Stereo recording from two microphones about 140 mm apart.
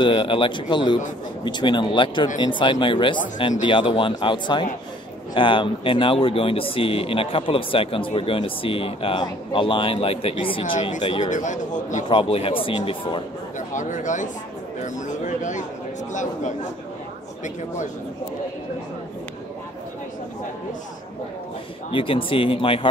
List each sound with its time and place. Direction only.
0.0 s speech: 35° left (ahead or behind)
11.2 s a man's voice: 60° left (ahead or behind)
12.1 s speech: 40° left (ahead or behind)
13.6 s a man's voice: 65° left (ahead or behind)
21.9 s speech: 40° left (ahead or behind)